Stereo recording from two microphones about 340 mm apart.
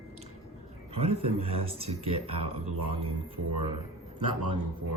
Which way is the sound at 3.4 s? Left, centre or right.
Right.